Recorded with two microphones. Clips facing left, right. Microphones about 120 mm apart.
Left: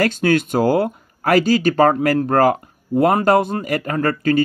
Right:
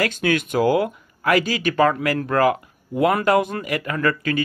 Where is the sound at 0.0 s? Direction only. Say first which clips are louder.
Left 4 dB; 40° left (ahead or behind).